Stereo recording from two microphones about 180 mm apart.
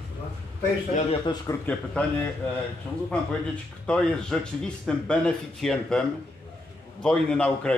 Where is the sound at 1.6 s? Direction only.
10° left (ahead or behind).